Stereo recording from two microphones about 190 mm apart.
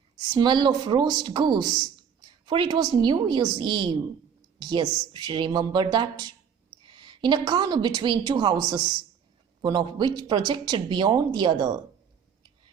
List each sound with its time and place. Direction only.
0.3 s a woman's voice: 25° right (ahead or behind)